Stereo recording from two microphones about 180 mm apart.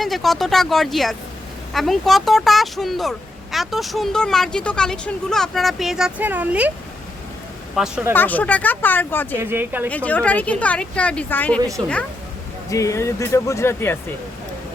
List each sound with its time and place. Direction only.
0.0 s speech: centre (ahead or behind)
7.8 s speech: centre (ahead or behind)
8.1 s speech: 10° left (ahead or behind)
9.4 s speech: 10° right (ahead or behind)
9.9 s speech: 10° left (ahead or behind)
12.7 s speech: 15° left (ahead or behind)